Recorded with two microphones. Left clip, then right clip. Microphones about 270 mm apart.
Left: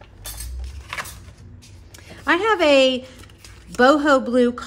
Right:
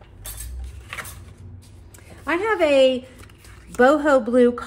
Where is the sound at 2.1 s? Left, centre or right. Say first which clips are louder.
Left 4 dB; centre.